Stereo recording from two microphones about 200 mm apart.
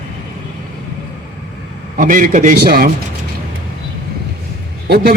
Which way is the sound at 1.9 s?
40° right (ahead or behind).